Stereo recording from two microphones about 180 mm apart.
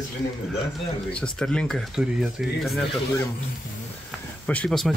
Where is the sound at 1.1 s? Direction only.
5° left (ahead or behind).